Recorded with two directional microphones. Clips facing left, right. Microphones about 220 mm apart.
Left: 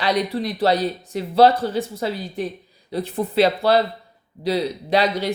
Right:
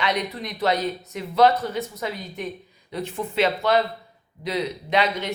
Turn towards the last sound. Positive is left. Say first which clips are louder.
# left 4 dB
turn(degrees=35)  # may be behind; listen again after turning